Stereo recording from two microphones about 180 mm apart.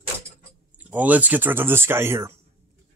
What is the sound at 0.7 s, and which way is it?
A man's voice, 10° right (ahead or behind).